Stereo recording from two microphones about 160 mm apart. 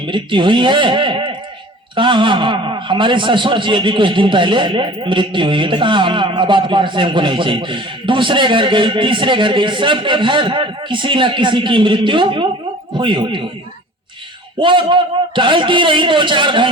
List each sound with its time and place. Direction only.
0.0 s a man's voice: 30° right (ahead or behind)
14.6 s a man's voice: 30° right (ahead or behind)